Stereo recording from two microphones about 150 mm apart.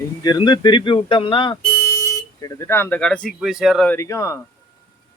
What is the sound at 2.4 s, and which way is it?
Speech, 20° left (ahead or behind).